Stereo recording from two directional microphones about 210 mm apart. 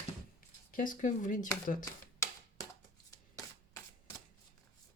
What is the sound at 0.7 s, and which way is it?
Speech, 40° left (ahead or behind).